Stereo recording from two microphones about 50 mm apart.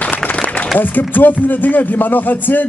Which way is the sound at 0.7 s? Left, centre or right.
Left.